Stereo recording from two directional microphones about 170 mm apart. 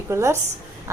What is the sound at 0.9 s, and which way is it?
Music, 15° right (ahead or behind).